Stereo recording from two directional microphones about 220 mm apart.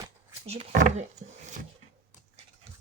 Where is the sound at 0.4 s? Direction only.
30° right (ahead or behind).